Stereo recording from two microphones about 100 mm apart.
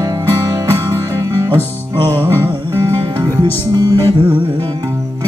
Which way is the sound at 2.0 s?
30° right (ahead or behind).